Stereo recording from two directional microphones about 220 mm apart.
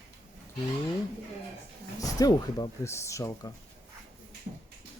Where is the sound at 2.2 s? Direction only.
15° left (ahead or behind).